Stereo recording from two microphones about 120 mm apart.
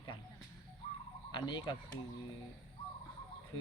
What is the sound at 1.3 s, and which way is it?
Speech, 40° left (ahead or behind).